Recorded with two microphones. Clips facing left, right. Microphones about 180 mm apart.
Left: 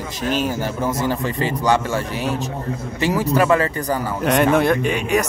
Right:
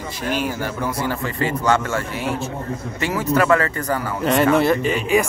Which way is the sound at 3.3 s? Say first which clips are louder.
Right 1 dB; 15° left (ahead or behind).